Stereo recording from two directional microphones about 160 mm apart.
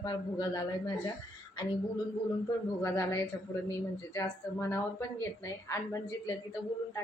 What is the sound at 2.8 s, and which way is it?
Speech, 15° left (ahead or behind).